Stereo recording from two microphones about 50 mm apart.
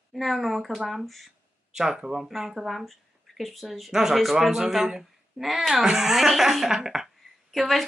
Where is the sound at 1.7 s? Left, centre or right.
Centre.